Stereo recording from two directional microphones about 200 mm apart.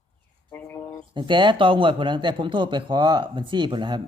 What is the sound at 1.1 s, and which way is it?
A man's voice, 25° right (ahead or behind).